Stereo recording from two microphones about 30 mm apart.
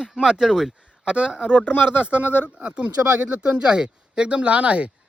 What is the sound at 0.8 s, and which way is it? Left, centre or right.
Speech, right.